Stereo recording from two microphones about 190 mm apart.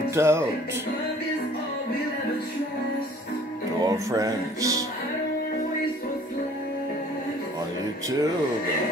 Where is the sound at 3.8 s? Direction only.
20° right (ahead or behind).